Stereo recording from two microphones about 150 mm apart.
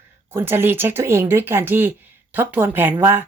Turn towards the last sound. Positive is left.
turn(degrees=-15)  # may be behind; listen again after turning